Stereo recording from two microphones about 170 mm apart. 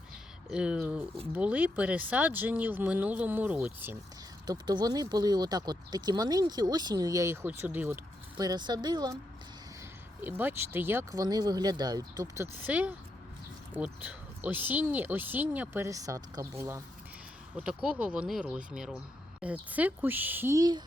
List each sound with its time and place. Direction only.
0.5 s speech: 5° right (ahead or behind)
4.4 s speech: 25° right (ahead or behind)
8.4 s speech: 25° right (ahead or behind)
10.2 s speech: 10° right (ahead or behind)